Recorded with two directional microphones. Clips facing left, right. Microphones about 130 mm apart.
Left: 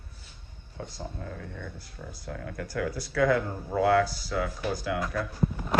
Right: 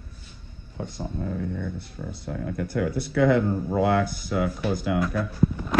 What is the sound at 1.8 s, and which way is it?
Speech, 25° right (ahead or behind).